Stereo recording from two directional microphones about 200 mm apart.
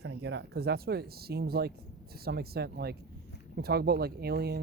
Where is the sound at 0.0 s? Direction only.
75° right (ahead or behind).